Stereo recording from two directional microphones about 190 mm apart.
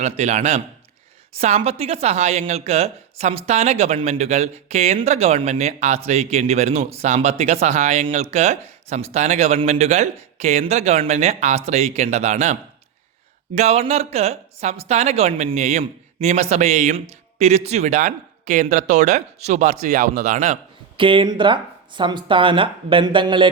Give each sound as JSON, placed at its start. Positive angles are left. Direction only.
{"t": 0.0, "sound": "a woman's voice", "side_deg": -35}
{"t": 13.6, "sound": "a woman's voice", "side_deg": -35}
{"t": 20.9, "sound": "speech", "side_deg": -25}